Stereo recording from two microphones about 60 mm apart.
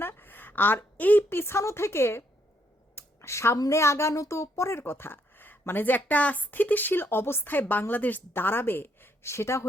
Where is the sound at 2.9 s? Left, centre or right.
Left.